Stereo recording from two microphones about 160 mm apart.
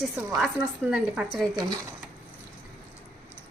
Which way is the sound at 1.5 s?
25° right (ahead or behind).